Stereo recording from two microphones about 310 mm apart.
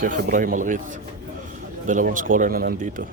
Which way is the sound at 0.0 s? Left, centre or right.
Right.